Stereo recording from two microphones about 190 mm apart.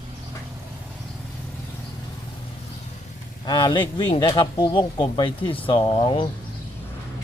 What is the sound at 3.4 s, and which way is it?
Speech, 20° left (ahead or behind).